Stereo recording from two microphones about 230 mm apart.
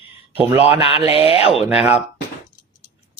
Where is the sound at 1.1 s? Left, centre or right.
Left.